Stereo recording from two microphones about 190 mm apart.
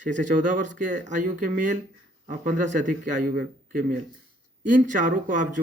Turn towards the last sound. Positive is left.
turn(degrees=-45)  # may be behind; listen again after turning